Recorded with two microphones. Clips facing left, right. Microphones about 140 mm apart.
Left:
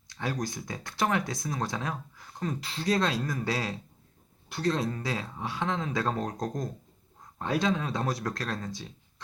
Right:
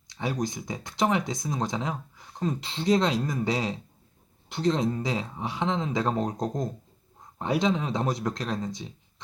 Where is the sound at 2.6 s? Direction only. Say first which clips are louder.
Right 4 dB; 25° right (ahead or behind).